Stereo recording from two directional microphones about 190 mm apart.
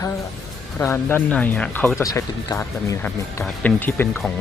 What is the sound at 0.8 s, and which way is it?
Speech, 10° left (ahead or behind).